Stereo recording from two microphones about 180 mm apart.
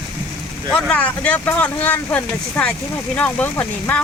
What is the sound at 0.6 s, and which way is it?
Speech, 5° left (ahead or behind).